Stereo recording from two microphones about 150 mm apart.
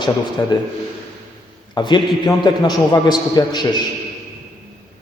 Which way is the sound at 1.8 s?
30° left (ahead or behind).